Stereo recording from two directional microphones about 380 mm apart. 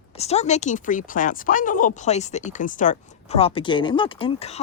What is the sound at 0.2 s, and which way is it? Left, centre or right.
Speech, centre.